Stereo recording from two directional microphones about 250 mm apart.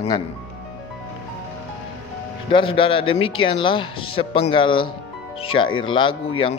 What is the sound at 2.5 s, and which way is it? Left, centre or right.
A man's voice, left.